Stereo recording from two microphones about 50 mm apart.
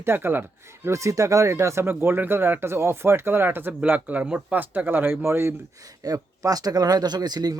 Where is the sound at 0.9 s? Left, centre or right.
Right.